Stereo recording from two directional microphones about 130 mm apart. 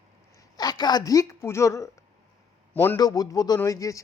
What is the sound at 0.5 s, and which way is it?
A man's voice, 30° left (ahead or behind).